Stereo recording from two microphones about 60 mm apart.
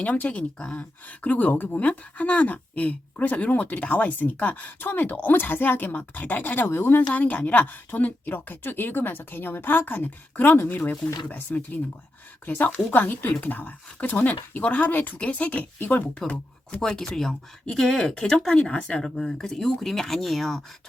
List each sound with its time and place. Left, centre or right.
0.0 s speech: left
7.1 s a woman's voice: left
16.8 s speech: centre